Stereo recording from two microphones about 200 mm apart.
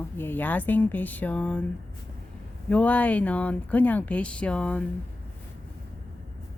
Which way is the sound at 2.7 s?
5° left (ahead or behind).